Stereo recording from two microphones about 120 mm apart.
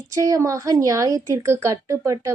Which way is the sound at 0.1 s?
25° right (ahead or behind).